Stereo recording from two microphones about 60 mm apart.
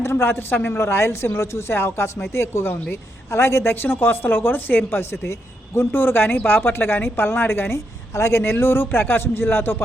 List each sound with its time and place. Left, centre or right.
0.0 s a woman's voice: left
5.2 s speech: left